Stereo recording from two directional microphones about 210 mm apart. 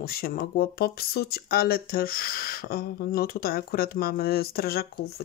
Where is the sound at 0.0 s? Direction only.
45° left (ahead or behind).